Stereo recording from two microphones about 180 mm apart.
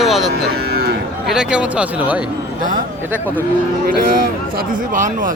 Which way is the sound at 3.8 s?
55° right (ahead or behind).